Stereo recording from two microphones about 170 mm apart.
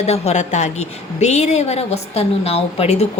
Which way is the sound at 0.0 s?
40° left (ahead or behind).